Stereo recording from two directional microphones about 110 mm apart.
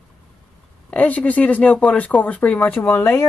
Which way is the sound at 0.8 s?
15° left (ahead or behind).